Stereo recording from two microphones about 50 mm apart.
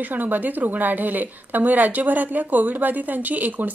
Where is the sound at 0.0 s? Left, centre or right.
Right.